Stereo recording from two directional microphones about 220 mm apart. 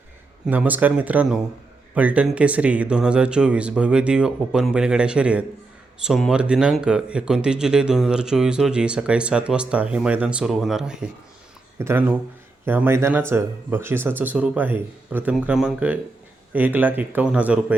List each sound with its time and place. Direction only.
0.4 s speech: 5° right (ahead or behind)